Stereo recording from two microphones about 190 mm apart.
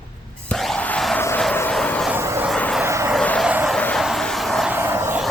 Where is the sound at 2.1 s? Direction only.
15° right (ahead or behind).